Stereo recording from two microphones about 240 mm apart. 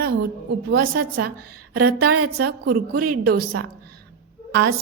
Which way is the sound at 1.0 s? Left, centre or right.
Right.